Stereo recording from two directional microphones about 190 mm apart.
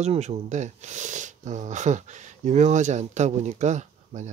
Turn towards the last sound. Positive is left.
turn(degrees=-40)  # may be behind; listen again after turning